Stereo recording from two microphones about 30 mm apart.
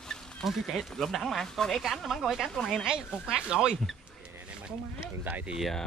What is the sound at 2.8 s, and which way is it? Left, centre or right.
Speech, right.